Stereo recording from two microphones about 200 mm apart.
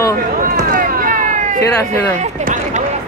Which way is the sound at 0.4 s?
45° right (ahead or behind).